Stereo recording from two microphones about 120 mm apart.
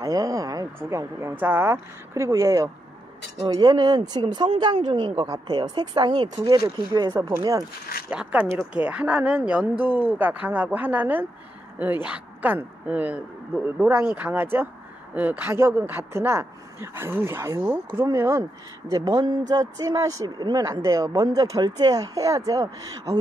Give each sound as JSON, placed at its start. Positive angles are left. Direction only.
{"t": 0.0, "sound": "speech", "side_deg": -30}
{"t": 8.1, "sound": "speech", "side_deg": -10}